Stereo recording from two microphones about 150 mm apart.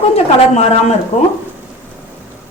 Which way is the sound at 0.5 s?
50° left (ahead or behind).